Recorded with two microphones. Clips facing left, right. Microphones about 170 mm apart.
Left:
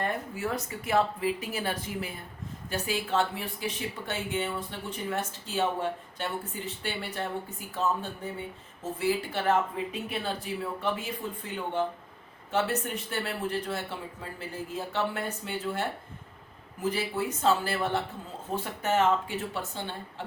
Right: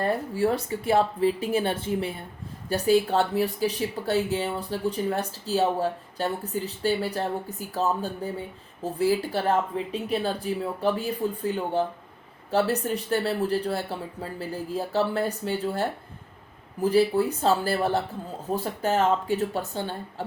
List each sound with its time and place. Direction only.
0.0 s speech: 35° right (ahead or behind)
17.4 s speech: 35° right (ahead or behind)